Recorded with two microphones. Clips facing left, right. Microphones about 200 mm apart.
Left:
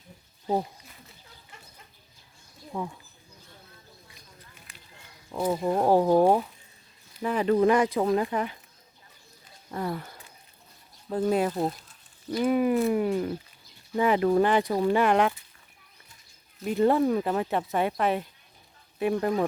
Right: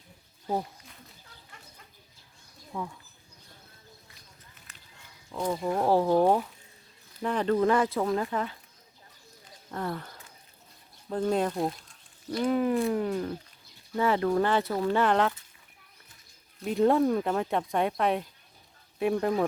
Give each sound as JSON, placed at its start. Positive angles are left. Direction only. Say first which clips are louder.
{"t": 0.4, "sound": "speech", "louder": "left 3 dB", "side_deg": 15}
{"t": 2.7, "sound": "speech", "louder": "left 3 dB", "side_deg": 15}
{"t": 4.7, "sound": "a sound", "louder": "left 3 dB", "side_deg": 10}
{"t": 5.4, "sound": "speech", "louder": "left 3 dB", "side_deg": 10}
{"t": 9.7, "sound": "speech", "louder": "left 2 dB", "side_deg": 10}
{"t": 16.6, "sound": "speech", "louder": "left 1 dB", "side_deg": 0}